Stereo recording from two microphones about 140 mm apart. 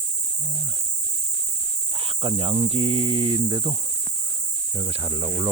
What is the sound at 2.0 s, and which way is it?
Speech, 40° right (ahead or behind).